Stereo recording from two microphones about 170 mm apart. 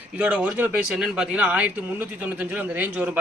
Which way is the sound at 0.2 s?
10° right (ahead or behind).